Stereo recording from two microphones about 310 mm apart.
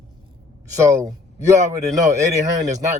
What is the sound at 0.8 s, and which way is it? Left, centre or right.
A man's voice, centre.